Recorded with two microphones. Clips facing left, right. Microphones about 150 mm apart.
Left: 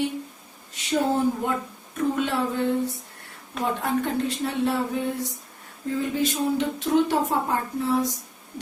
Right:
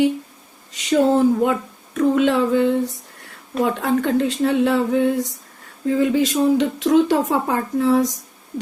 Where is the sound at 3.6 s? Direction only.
90° right.